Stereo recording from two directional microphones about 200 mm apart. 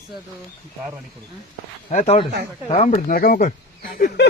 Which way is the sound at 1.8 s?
35° left (ahead or behind).